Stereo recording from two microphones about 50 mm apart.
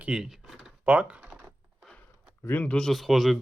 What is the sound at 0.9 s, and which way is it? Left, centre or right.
Speech, right.